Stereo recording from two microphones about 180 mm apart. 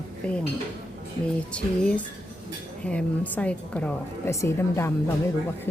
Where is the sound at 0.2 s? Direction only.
5° left (ahead or behind).